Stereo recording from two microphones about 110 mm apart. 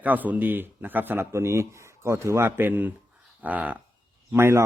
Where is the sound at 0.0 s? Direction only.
15° right (ahead or behind).